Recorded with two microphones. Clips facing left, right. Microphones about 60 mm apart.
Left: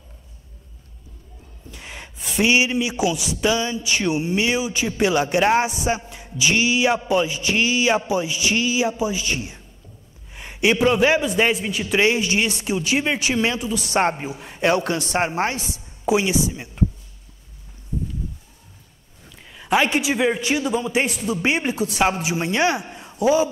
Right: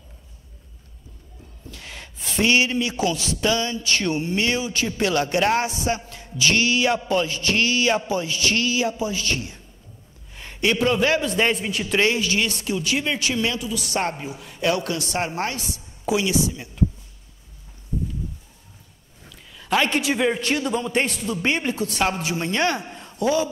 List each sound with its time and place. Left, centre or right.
1.7 s a man's voice: left
11.5 s a man's voice: centre
12.0 s speech: left
19.5 s a man's voice: centre